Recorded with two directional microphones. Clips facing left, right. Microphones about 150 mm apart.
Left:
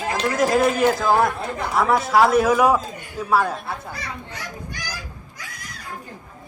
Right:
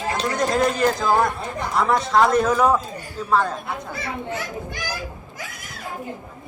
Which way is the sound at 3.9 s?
25° right (ahead or behind).